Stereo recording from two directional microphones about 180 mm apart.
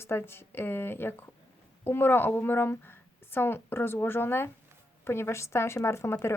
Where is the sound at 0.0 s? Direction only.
15° left (ahead or behind).